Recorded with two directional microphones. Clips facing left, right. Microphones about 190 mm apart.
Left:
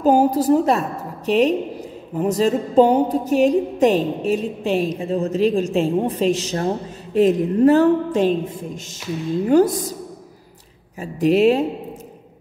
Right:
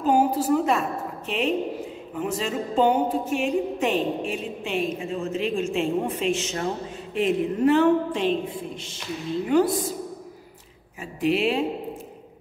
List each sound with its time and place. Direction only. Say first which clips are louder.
0.0 s a woman's voice: left 5 dB; 40° left (ahead or behind)
11.0 s a woman's voice: left 7 dB; 40° left (ahead or behind)